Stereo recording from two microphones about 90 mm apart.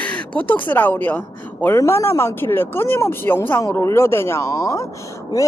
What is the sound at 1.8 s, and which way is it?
A woman's voice, 30° left (ahead or behind).